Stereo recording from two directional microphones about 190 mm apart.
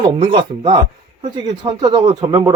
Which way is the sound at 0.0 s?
25° right (ahead or behind).